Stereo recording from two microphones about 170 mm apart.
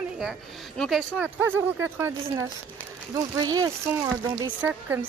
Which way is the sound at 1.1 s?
10° right (ahead or behind).